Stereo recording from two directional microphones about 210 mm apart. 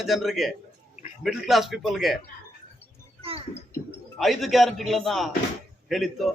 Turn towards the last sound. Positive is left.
turn(degrees=0)  # may be behind; listen again after turning